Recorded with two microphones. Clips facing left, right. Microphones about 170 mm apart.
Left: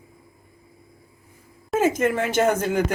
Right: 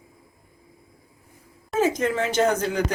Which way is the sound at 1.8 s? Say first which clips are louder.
Left 2 dB; 50° left (ahead or behind).